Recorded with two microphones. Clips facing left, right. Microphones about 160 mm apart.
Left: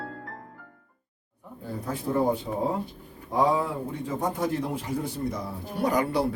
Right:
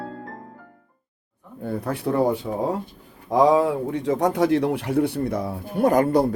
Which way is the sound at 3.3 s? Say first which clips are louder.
Right 7 dB; 90° right.